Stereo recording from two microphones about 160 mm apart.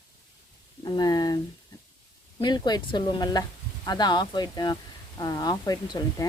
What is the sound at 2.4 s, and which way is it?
Speech, 25° left (ahead or behind).